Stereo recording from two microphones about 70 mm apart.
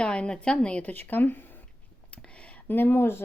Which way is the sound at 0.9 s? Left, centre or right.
Left.